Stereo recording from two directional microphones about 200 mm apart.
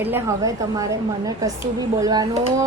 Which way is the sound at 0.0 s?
15° right (ahead or behind).